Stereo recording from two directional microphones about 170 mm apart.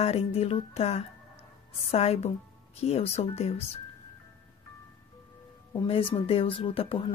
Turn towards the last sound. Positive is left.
turn(degrees=30)  # may be behind; listen again after turning